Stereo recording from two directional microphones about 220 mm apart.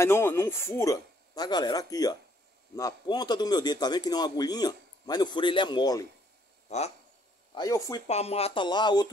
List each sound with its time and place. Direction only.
0.0 s a man's voice: 10° left (ahead or behind)
6.7 s a man's voice: 30° left (ahead or behind)
7.5 s speech: 15° left (ahead or behind)
8.1 s a man's voice: 30° left (ahead or behind)